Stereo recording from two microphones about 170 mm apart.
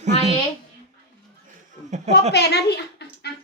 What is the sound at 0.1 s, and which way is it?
Speech, 40° left (ahead or behind).